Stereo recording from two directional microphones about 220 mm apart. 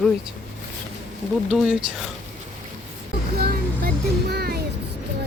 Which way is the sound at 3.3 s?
45° right (ahead or behind).